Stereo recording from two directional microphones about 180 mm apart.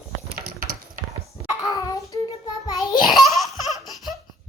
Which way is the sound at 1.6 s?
20° left (ahead or behind).